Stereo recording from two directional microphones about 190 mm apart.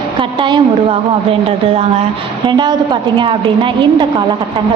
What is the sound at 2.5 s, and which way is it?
A woman's voice, 25° right (ahead or behind).